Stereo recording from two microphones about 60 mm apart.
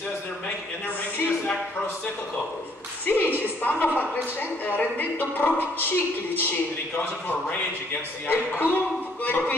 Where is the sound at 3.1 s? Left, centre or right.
Left.